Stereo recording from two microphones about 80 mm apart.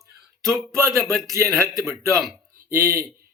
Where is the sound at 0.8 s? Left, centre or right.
Right.